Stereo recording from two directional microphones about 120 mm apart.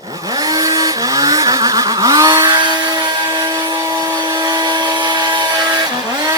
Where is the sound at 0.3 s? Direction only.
30° right (ahead or behind).